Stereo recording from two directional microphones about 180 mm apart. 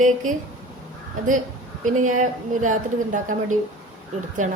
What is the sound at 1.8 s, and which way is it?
Speech, 45° right (ahead or behind).